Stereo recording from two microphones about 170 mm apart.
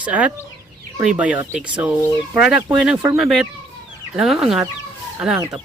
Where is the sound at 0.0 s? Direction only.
10° right (ahead or behind).